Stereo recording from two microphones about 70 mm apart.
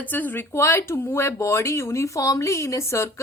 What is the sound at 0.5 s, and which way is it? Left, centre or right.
Speech, left.